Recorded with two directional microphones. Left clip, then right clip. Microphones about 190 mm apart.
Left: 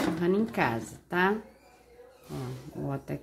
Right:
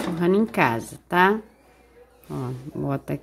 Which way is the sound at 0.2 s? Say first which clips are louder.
Right 10 dB; 35° right (ahead or behind).